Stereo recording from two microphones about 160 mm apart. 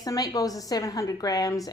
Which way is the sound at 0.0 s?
20° left (ahead or behind).